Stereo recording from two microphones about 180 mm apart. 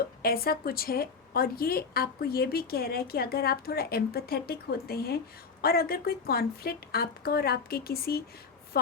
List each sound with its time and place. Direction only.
0.2 s a woman's voice: 55° left (ahead or behind)